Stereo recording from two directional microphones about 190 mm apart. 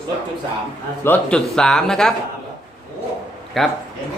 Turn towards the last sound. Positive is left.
turn(degrees=0)  # may be behind; listen again after turning